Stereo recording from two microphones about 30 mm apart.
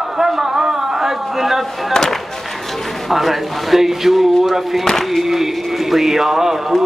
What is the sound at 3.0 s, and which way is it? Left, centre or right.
Speech, centre.